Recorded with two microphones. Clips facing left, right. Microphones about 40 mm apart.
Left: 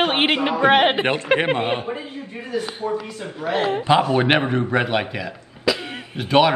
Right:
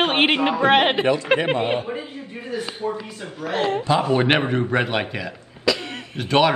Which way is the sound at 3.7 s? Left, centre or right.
Left.